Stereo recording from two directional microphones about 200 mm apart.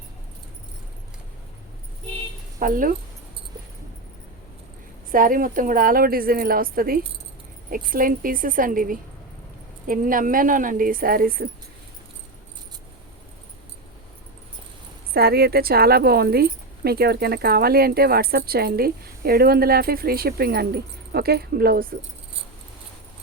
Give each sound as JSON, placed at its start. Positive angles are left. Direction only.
{"t": 2.6, "sound": "speech", "side_deg": -45}
{"t": 5.1, "sound": "speech", "side_deg": -45}
{"t": 15.1, "sound": "speech", "side_deg": -50}